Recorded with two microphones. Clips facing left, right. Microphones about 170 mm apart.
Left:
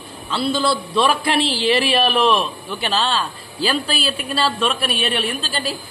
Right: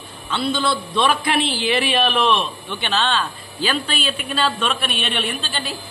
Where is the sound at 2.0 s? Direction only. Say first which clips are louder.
Left 2 dB; 5° left (ahead or behind).